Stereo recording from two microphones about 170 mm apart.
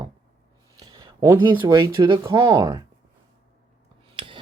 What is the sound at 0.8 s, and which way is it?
Speech, 20° right (ahead or behind).